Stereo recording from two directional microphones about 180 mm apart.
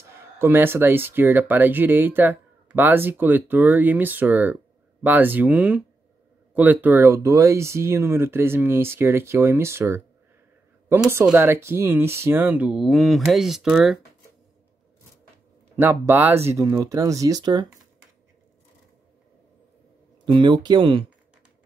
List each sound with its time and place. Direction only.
0.1 s speech: 10° right (ahead or behind)
15.7 s speech: 10° right (ahead or behind)
20.2 s speech: 25° right (ahead or behind)